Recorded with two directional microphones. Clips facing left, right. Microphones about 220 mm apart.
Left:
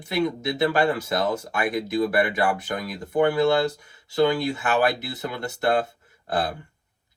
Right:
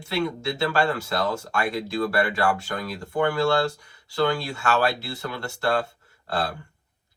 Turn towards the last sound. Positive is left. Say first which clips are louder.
# left 2 dB
turn(degrees=20)  # may be behind; listen again after turning